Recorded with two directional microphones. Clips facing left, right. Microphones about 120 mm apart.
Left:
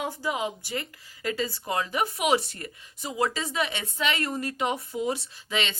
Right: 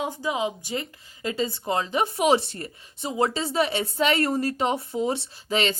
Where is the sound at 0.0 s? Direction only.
15° right (ahead or behind).